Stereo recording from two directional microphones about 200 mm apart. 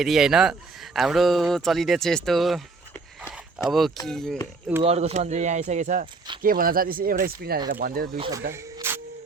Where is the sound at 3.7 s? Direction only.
Centre (ahead or behind).